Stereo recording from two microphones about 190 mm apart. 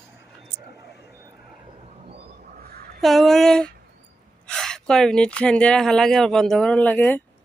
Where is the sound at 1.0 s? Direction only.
15° right (ahead or behind).